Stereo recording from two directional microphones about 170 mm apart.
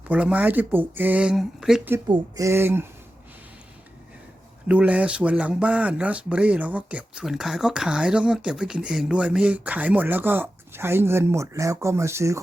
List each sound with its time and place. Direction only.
0.1 s speech: 5° right (ahead or behind)
2.0 s speech: 25° right (ahead or behind)
4.7 s speech: 10° right (ahead or behind)